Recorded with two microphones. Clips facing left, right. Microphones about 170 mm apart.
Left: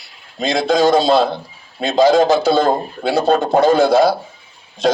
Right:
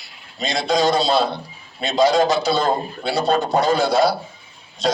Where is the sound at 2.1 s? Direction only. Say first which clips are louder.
Left 5 dB; 55° left (ahead or behind).